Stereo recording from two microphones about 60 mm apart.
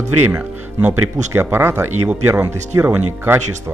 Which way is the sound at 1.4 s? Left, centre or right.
Right.